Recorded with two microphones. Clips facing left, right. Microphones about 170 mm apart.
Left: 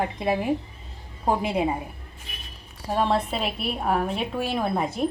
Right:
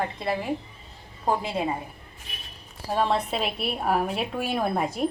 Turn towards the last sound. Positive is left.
turn(degrees=-5)  # may be behind; listen again after turning